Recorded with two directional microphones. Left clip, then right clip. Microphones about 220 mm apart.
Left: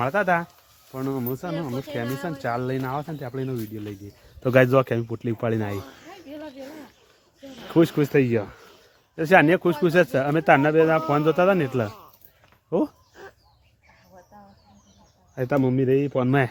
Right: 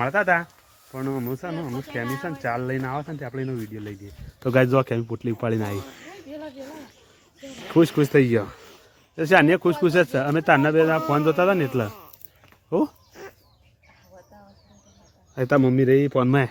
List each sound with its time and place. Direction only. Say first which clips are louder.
0.0 s speech: right 1 dB; centre (ahead or behind)
5.8 s speech: right 2 dB; 25° right (ahead or behind)
6.2 s a sound: right 1 dB; 5° left (ahead or behind)
7.4 s a sound: right 2 dB; 25° right (ahead or behind)
7.7 s speech: right 1 dB; 5° right (ahead or behind)
15.4 s speech: right 3 dB; 15° right (ahead or behind)